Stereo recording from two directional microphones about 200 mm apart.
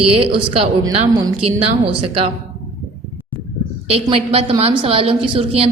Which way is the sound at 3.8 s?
30° right (ahead or behind).